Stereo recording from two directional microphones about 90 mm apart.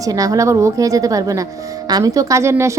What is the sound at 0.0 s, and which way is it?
A woman's voice, 40° right (ahead or behind).